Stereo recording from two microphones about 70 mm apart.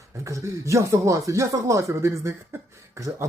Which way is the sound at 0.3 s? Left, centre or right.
Right.